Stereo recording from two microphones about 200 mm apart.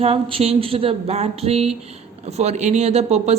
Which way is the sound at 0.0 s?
30° right (ahead or behind).